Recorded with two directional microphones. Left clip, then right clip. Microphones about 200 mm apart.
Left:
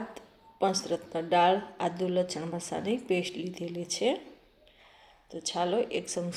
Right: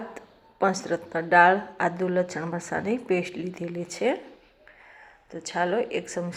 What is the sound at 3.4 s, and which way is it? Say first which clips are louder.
Speech: right 4 dB; 50° right (ahead or behind).